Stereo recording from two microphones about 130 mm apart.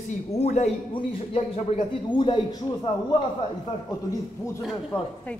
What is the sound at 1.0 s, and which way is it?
A man's voice, 45° left (ahead or behind).